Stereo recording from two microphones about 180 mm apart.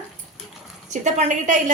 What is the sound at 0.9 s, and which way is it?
Speech, 40° right (ahead or behind).